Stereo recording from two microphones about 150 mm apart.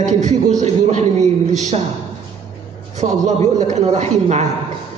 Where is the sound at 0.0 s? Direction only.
50° right (ahead or behind).